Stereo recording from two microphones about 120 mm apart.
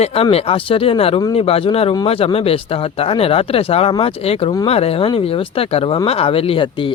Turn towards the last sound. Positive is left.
turn(degrees=45)  # may be behind; listen again after turning